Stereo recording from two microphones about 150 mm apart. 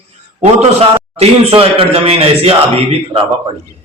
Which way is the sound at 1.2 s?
40° right (ahead or behind).